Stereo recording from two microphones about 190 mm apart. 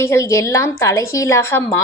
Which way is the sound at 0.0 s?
15° left (ahead or behind).